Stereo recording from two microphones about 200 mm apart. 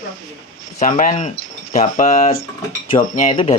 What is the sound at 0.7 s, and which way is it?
Speech, 40° left (ahead or behind).